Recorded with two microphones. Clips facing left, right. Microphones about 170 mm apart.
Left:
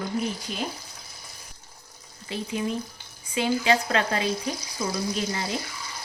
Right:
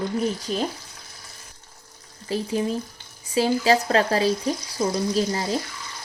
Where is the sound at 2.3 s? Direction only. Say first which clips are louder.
Right 4 dB; 35° right (ahead or behind).